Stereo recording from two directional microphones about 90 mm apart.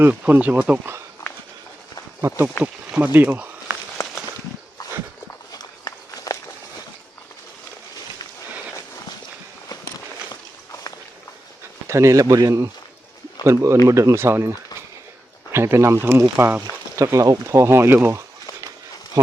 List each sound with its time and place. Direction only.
0.0 s speech: 20° right (ahead or behind)
2.2 s speech: 35° right (ahead or behind)
2.9 s speech: 20° right (ahead or behind)
4.8 s dog: 40° left (ahead or behind)
5.5 s walk: 45° left (ahead or behind)
11.9 s speech: 35° right (ahead or behind)
16.4 s speech: 20° right (ahead or behind)
17.0 s speech: 35° right (ahead or behind)
19.2 s a sound: 45° right (ahead or behind)